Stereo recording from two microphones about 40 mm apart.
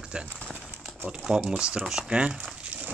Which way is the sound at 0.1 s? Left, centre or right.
Right.